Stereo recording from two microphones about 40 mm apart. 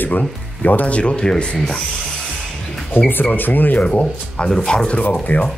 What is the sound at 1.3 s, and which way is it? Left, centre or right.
Rub, left.